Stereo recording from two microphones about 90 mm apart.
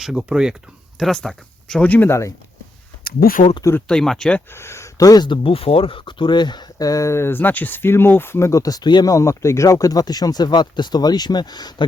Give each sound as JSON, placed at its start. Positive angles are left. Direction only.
{"t": 0.0, "sound": "speech", "side_deg": -10}
{"t": 0.9, "sound": "speech", "side_deg": 5}
{"t": 3.8, "sound": "speech", "side_deg": 5}
{"t": 4.5, "sound": "speech", "side_deg": 30}
{"t": 5.4, "sound": "speech", "side_deg": 90}
{"t": 9.1, "sound": "speech", "side_deg": 35}